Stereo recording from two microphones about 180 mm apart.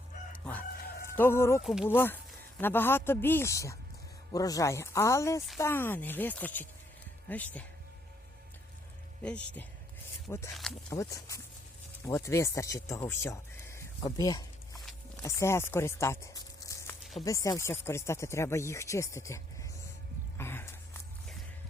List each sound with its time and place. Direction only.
1.1 s speech: 15° left (ahead or behind)
1.6 s speech: 5° right (ahead or behind)
1.9 s speech: 10° left (ahead or behind)
10.3 s speech: 15° left (ahead or behind)
17.0 s a sound: centre (ahead or behind)
17.2 s speech: 20° left (ahead or behind)
20.4 s a sound: 15° left (ahead or behind)